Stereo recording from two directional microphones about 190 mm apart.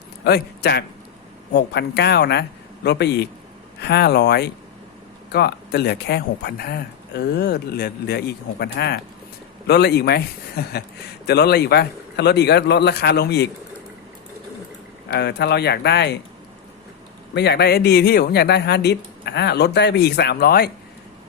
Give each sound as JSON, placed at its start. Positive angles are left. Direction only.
{"t": 0.3, "sound": "speech", "side_deg": 60}
{"t": 15.1, "sound": "speech", "side_deg": 60}
{"t": 17.3, "sound": "speech", "side_deg": 60}